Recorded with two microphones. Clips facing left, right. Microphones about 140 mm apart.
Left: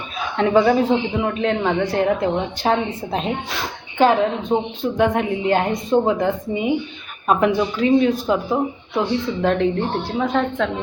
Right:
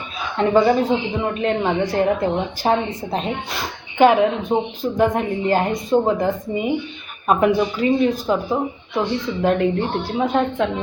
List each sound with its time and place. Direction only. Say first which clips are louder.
0.3 s a woman's voice: even; 5° right (ahead or behind)
10.2 s a woman's voice: right 2 dB; 15° right (ahead or behind)